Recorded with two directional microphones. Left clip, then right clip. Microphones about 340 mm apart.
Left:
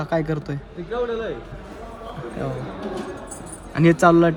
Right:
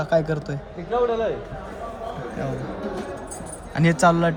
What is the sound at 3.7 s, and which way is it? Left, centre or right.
Speech, centre.